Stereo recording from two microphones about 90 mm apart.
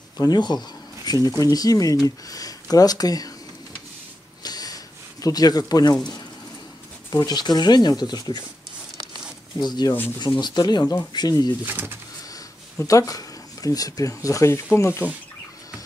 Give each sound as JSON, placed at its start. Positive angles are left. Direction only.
{"t": 0.2, "sound": "speech", "side_deg": 50}
{"t": 4.4, "sound": "snort", "side_deg": 45}
{"t": 5.2, "sound": "speech", "side_deg": 45}
{"t": 7.1, "sound": "speech", "side_deg": 55}
{"t": 9.6, "sound": "speech", "side_deg": 50}
{"t": 11.6, "sound": "speech", "side_deg": -20}
{"t": 12.7, "sound": "speech", "side_deg": 40}